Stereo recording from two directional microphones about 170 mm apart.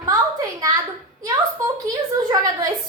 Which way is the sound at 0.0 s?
20° right (ahead or behind).